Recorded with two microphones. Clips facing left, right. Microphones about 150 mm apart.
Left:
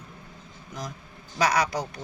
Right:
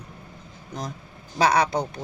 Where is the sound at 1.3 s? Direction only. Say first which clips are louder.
Right 4 dB; 30° right (ahead or behind).